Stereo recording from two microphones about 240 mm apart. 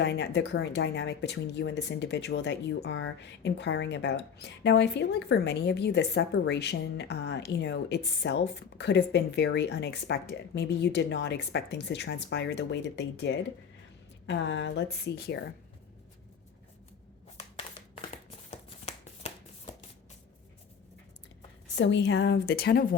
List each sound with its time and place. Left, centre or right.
0.0 s speech: left
17.3 s shuffling cards: left
21.8 s speech: left